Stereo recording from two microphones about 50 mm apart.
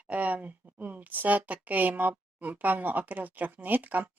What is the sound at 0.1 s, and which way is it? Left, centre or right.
A woman's voice, right.